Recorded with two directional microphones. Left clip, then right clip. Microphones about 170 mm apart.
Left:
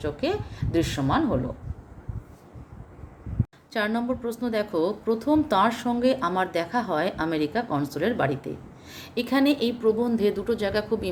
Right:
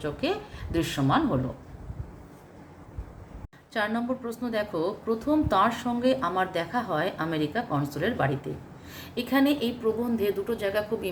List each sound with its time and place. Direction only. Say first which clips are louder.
0.0 s a woman's voice: left 2 dB; 30° left (ahead or behind)
3.7 s a woman's voice: left 2 dB; 40° left (ahead or behind)